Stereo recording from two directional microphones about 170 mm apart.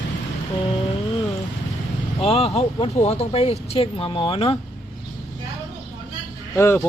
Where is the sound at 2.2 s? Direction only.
35° left (ahead or behind).